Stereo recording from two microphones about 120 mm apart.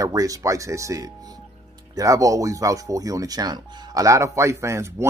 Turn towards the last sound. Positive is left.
turn(degrees=-25)  # may be behind; listen again after turning